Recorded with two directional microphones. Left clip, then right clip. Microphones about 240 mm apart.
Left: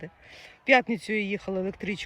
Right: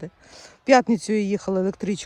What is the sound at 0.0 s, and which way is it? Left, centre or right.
Speech, right.